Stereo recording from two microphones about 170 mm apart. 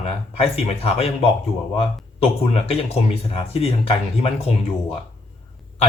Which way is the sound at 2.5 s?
35° left (ahead or behind).